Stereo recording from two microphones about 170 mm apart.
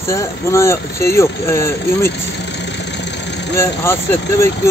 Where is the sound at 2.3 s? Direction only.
90° left.